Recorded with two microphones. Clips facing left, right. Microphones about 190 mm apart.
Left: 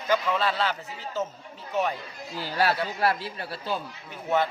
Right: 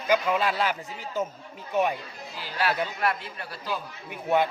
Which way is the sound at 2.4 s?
40° left (ahead or behind).